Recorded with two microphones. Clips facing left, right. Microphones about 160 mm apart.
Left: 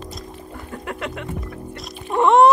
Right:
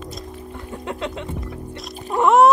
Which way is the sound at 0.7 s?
20° right (ahead or behind).